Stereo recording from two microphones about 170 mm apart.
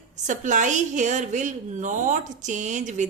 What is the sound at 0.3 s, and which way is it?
A woman's voice, 45° right (ahead or behind).